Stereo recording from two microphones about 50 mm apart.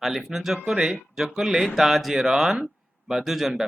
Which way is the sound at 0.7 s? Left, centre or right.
Centre.